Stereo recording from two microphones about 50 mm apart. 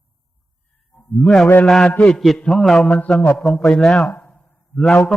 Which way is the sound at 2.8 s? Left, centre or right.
Left.